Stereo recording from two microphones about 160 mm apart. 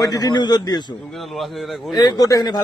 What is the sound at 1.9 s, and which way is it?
Speech, 25° left (ahead or behind).